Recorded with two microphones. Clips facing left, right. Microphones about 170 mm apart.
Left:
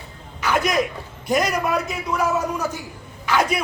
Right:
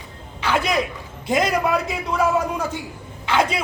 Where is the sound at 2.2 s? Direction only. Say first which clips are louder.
Right 2 dB; 30° right (ahead or behind).